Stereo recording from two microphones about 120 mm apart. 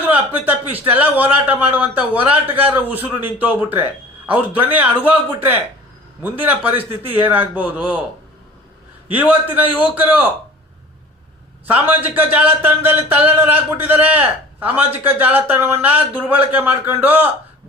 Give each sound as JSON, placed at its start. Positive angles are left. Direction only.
{"t": 0.0, "sound": "a man's voice", "side_deg": -15}
{"t": 6.2, "sound": "a man's voice", "side_deg": -15}
{"t": 9.1, "sound": "a man's voice", "side_deg": -15}
{"t": 11.6, "sound": "a man's voice", "side_deg": -15}